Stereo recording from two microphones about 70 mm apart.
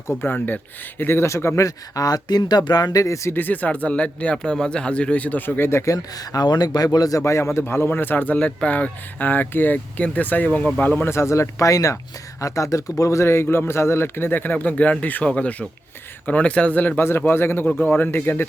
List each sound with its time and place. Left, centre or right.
0.2 s speech: left
3.0 s speech: left
3.3 s a man's voice: left
6.1 s speech: left
7.2 s a man's voice: left
11.1 s a man's voice: left
17.0 s a man's voice: left